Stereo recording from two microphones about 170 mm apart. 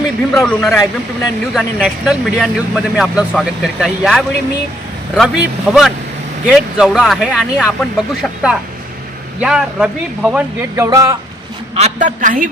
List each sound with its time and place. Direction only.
0.3 s speech: centre (ahead or behind)
10.8 s speech: 20° right (ahead or behind)
11.7 s a woman's voice: 45° right (ahead or behind)